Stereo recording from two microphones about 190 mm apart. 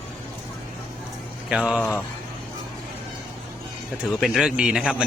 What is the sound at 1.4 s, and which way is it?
Speech, 5° right (ahead or behind).